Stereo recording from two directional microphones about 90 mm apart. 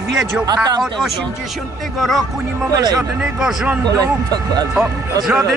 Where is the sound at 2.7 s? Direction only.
45° right (ahead or behind).